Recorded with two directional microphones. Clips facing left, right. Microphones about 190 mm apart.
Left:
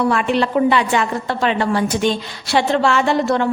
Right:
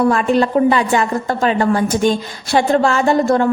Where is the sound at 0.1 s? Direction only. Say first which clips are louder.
Right 3 dB; 40° right (ahead or behind).